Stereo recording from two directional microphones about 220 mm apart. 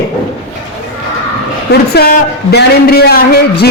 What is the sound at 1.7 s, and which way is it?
Speech, 45° left (ahead or behind).